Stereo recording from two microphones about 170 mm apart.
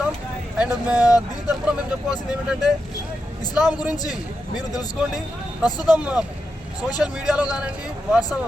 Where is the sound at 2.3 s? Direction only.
5° right (ahead or behind).